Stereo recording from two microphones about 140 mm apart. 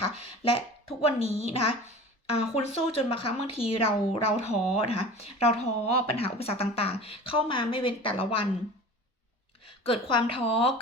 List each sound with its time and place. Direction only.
0.0 s speech: 45° left (ahead or behind)
9.8 s speech: 40° left (ahead or behind)